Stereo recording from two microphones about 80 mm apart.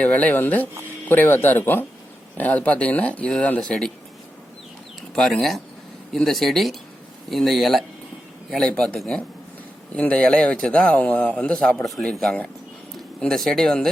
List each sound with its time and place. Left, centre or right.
0.0 s a man's voice: centre
5.1 s a man's voice: centre